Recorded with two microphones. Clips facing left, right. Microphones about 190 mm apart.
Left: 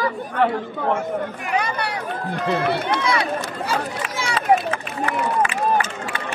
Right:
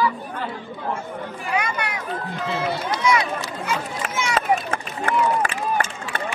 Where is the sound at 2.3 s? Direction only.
60° left (ahead or behind).